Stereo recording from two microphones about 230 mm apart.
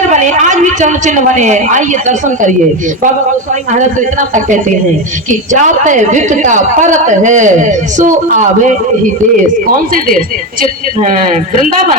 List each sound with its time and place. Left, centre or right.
0.1 s a woman's voice: right
4.4 s a woman's voice: right
9.9 s a woman's voice: right